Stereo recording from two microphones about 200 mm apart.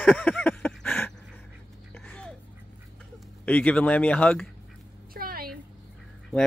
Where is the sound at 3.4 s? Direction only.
5° left (ahead or behind).